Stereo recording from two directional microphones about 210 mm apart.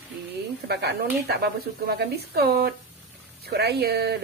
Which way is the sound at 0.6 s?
50° right (ahead or behind).